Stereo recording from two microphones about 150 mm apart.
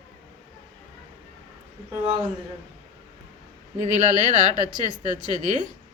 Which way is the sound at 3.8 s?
55° right (ahead or behind).